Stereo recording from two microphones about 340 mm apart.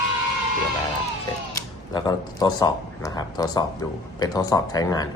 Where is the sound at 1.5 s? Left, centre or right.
Centre.